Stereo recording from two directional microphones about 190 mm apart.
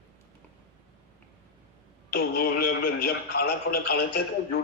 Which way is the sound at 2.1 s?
55° left (ahead or behind).